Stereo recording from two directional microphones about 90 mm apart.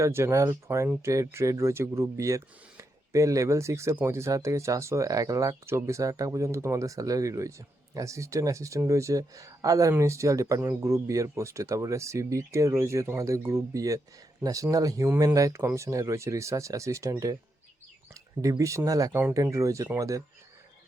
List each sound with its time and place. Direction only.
0.0 s speech: 30° right (ahead or behind)